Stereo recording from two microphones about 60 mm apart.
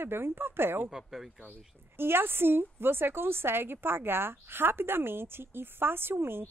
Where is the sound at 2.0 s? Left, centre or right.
Right.